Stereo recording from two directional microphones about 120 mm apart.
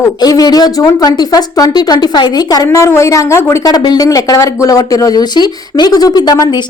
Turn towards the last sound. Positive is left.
turn(degrees=35)  # may be behind; listen again after turning